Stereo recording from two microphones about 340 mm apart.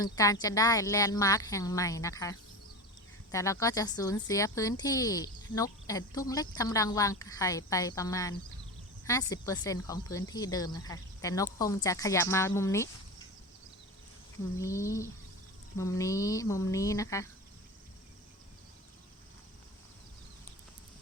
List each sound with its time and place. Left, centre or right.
0.0 s speech: centre
3.3 s speech: centre
14.6 s speech: centre